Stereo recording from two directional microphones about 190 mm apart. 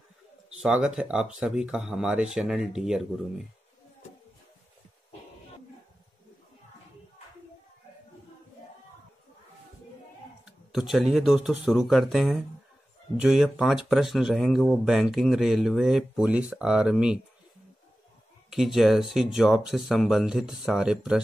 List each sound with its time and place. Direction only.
0.5 s speech: 5° right (ahead or behind)
10.4 s speech: centre (ahead or behind)
18.5 s speech: centre (ahead or behind)